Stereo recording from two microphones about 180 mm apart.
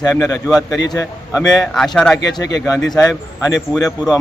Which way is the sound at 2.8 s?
20° left (ahead or behind).